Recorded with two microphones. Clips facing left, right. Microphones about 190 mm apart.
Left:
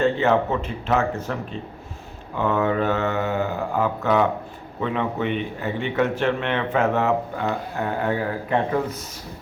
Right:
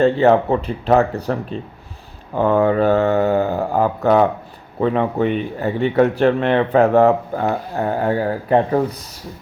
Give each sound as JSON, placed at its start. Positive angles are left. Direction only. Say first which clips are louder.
{"t": 0.0, "sound": "speech", "louder": "right 6 dB", "side_deg": -35}